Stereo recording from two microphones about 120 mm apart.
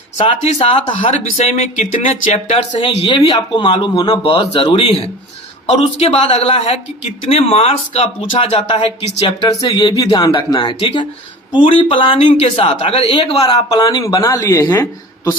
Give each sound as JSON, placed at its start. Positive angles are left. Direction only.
{"t": 0.2, "sound": "a man's voice", "side_deg": 50}
{"t": 1.0, "sound": "a man's voice", "side_deg": 65}
{"t": 9.5, "sound": "speech", "side_deg": 35}
{"t": 10.6, "sound": "a man's voice", "side_deg": 45}
{"t": 13.4, "sound": "speech", "side_deg": 30}